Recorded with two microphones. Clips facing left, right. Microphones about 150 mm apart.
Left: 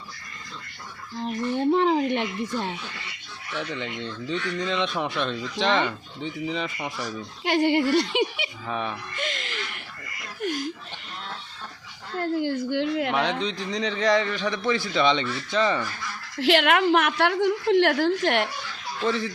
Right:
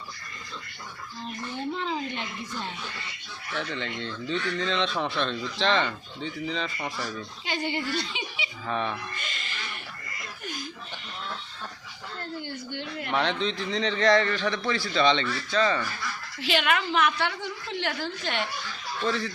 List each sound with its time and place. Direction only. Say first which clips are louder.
1.2 s a sound: left 9 dB; 65° left (ahead or behind)
3.5 s speech: left 1 dB; 5° left (ahead or behind)
7.4 s a woman's voice: left 10 dB; 75° left (ahead or behind)
8.6 s speech: right 1 dB; 5° left (ahead or behind)
9.1 s a sound: left 7 dB; 80° left
10.4 s laughter: left 11 dB; 75° left (ahead or behind)
12.1 s a woman's voice: left 11 dB; 90° left
13.4 s speech: even; 10° left (ahead or behind)
14.5 s speech: left 3 dB; 20° left (ahead or behind)
16.4 s a woman's voice: left 6 dB; 80° left
19.0 s speech: left 3 dB; 20° left (ahead or behind)